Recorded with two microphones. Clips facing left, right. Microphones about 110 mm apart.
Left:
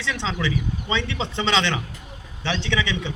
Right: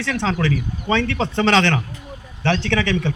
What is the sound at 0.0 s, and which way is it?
Speech, 50° right (ahead or behind).